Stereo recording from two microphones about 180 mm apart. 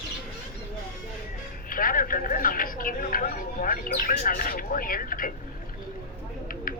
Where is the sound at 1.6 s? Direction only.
50° left (ahead or behind).